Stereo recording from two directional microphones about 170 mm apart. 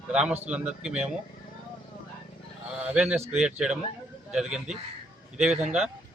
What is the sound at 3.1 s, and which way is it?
A man's voice, 15° right (ahead or behind).